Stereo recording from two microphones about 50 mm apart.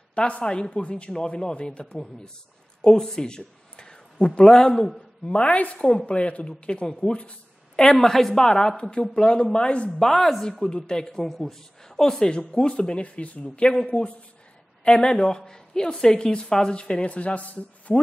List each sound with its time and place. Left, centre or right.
0.1 s speech: left
2.8 s a sound: centre
4.4 s a woman's voice: centre
5.2 s speech: left
5.8 s a woman's voice: centre
9.9 s a woman's voice: centre
10.6 s a woman's voice: centre